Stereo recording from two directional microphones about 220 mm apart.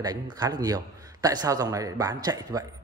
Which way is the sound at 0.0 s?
20° right (ahead or behind).